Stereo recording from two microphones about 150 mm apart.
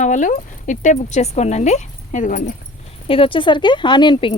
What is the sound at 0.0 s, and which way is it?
Speech, 55° left (ahead or behind).